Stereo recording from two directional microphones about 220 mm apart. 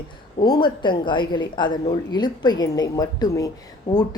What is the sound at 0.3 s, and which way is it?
A woman's voice, 20° left (ahead or behind).